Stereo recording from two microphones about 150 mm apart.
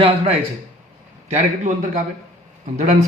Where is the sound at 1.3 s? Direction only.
55° right (ahead or behind).